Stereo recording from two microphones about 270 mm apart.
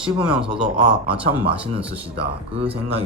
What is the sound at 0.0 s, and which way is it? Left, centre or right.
Speech, centre.